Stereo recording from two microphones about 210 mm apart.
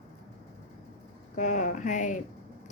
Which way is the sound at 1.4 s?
35° left (ahead or behind).